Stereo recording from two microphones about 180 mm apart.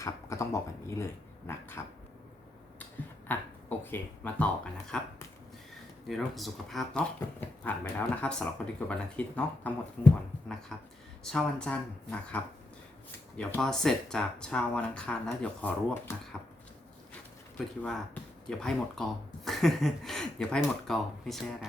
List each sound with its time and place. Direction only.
0.0 s speech: 15° left (ahead or behind)
3.2 s speech: 10° left (ahead or behind)
6.1 s speech: centre (ahead or behind)
17.8 s speech: 5° left (ahead or behind)